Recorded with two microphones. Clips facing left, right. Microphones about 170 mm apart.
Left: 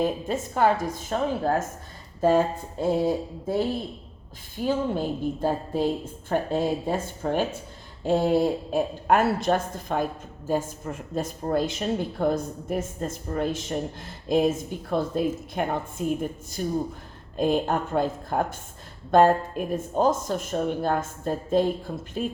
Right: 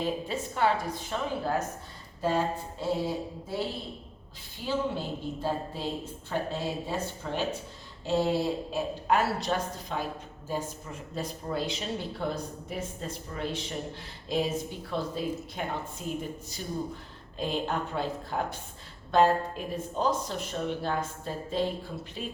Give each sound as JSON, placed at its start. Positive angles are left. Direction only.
{"t": 0.0, "sound": "speech", "side_deg": 50}
{"t": 2.8, "sound": "speech", "side_deg": 50}